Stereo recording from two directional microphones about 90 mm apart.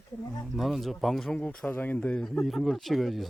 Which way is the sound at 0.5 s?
Centre (ahead or behind).